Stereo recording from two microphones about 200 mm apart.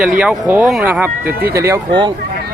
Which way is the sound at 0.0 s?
5° right (ahead or behind).